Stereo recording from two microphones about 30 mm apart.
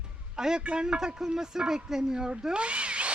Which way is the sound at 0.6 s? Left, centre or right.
Right.